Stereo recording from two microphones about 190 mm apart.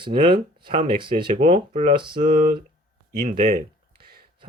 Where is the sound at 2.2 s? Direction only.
50° right (ahead or behind).